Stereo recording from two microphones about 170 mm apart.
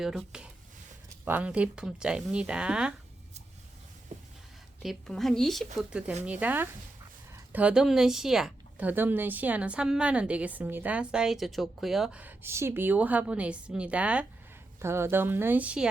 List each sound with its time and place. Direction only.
0.0 s speech: centre (ahead or behind)
4.8 s speech: centre (ahead or behind)